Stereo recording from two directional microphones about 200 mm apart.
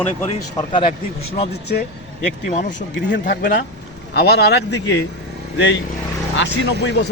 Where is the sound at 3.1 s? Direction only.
55° left (ahead or behind).